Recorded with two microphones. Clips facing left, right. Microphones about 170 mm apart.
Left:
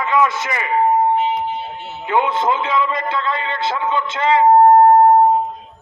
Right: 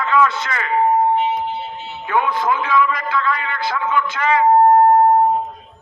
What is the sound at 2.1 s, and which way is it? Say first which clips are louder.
A man's voice: left 1 dB; 25° left (ahead or behind).